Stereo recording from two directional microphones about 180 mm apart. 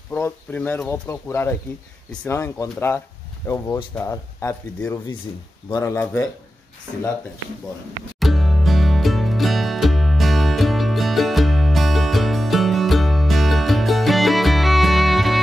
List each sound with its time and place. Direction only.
0.1 s speech: 10° left (ahead or behind)
8.2 s music: centre (ahead or behind)